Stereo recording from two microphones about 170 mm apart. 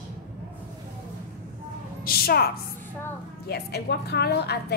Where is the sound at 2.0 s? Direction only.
65° left (ahead or behind).